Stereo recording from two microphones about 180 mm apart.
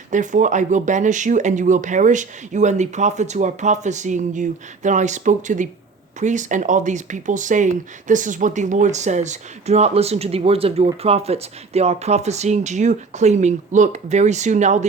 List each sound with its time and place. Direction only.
0.1 s speech: 45° right (ahead or behind)